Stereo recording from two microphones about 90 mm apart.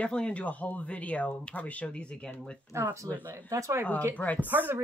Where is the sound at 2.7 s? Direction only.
30° right (ahead or behind).